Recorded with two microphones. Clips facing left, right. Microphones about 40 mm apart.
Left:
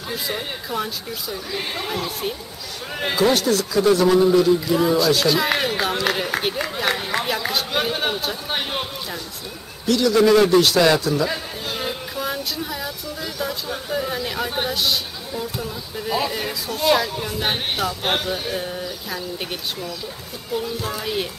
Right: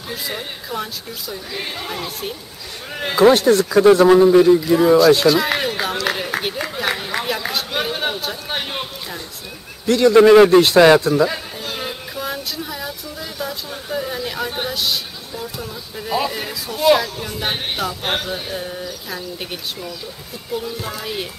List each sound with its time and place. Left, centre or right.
0.1 s speech: centre
3.3 s a man's voice: right
4.7 s speech: centre
5.2 s a sound: centre
9.8 s a man's voice: right
11.2 s a sound: centre
20.5 s speech: centre